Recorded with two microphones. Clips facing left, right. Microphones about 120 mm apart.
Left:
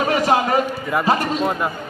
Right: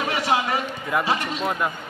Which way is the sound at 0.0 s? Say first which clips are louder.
Left 5 dB; 45° left (ahead or behind).